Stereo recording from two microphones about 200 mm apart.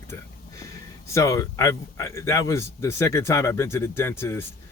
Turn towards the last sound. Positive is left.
turn(degrees=10)  # may be behind; listen again after turning